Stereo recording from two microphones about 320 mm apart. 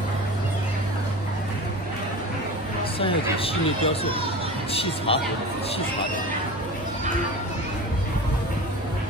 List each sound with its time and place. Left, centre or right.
3.0 s speech: centre
4.0 s speech: centre
4.7 s speech: centre